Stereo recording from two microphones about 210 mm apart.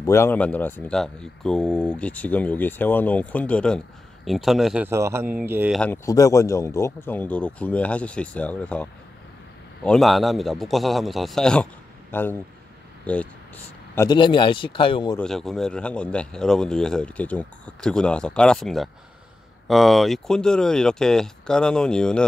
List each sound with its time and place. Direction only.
0.0 s speech: 10° left (ahead or behind); by 5.8 s 10° right (ahead or behind)
5.8 s speech: 10° left (ahead or behind)
9.8 s speech: centre (ahead or behind)
13.9 s speech: 20° left (ahead or behind)
15.1 s speech: centre (ahead or behind)